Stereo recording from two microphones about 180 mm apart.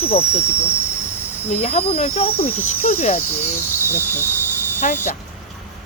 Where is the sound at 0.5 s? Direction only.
15° left (ahead or behind).